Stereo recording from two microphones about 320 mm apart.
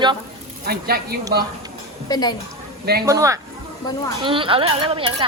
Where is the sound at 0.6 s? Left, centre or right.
Right.